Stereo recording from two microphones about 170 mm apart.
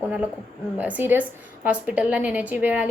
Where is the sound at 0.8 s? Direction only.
10° right (ahead or behind).